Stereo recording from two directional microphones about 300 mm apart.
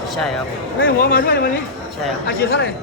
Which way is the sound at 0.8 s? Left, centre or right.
Left.